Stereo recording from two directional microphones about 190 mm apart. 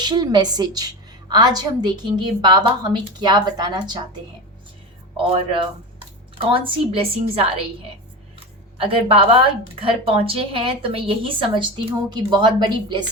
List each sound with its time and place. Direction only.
0.0 s a woman's voice: 20° right (ahead or behind)
5.1 s a woman's voice: 30° right (ahead or behind)
8.8 s a woman's voice: 30° right (ahead or behind)